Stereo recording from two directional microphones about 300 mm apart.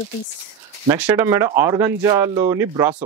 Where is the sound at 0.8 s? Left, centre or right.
Centre.